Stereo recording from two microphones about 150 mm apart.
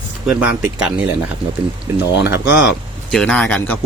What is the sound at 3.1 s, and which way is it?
Speech, 5° left (ahead or behind).